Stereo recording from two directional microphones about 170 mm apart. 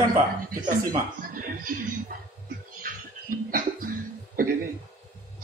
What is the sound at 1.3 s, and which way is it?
Speech, 55° right (ahead or behind).